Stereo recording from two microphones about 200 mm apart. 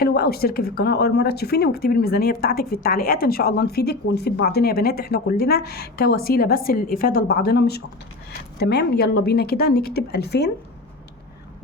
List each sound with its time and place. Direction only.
0.0 s speech: 50° left (ahead or behind)